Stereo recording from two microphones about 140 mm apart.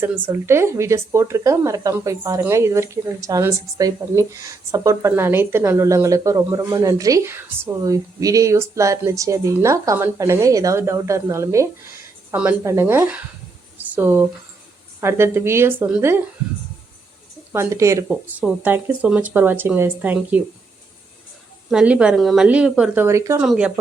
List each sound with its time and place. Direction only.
0.0 s speech: 20° right (ahead or behind)
13.7 s a sound: 15° right (ahead or behind)
15.0 s speech: 15° right (ahead or behind)
17.5 s speech: 20° right (ahead or behind)
18.1 s speech: 10° right (ahead or behind)
21.7 s a woman's voice: 5° right (ahead or behind)
23.0 s speech: 20° right (ahead or behind)
23.4 s speech: 10° right (ahead or behind)